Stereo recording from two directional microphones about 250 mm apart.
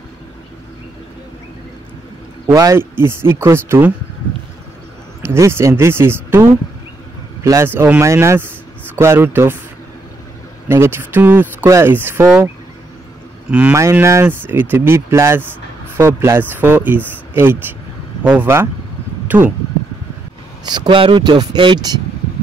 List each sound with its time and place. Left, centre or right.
2.4 s speech: centre
5.2 s speech: centre
7.4 s speech: centre
10.7 s speech: centre
13.5 s speech: centre
19.2 s a sound: centre
20.6 s speech: centre